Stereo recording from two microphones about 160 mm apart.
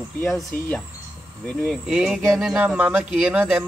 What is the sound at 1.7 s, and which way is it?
Speech, 5° right (ahead or behind).